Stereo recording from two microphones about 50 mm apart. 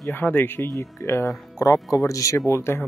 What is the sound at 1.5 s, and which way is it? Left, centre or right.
Speech, left.